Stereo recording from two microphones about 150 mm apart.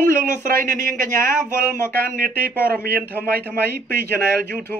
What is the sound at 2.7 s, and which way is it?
Speech, 90° right.